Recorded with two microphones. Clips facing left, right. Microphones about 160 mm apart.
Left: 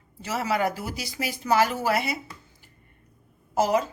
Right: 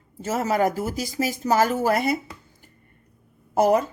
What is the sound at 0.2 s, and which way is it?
Speech, 45° right (ahead or behind).